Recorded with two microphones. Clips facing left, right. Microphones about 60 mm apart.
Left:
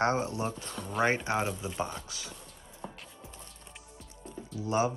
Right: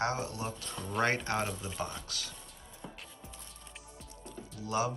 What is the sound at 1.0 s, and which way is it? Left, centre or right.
Speech, centre.